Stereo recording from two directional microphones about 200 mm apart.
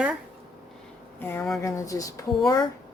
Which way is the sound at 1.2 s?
10° left (ahead or behind).